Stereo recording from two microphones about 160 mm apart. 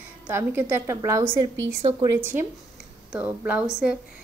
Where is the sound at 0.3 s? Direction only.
15° right (ahead or behind).